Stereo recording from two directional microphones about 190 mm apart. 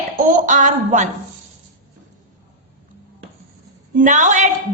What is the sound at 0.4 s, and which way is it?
Speech, 40° right (ahead or behind).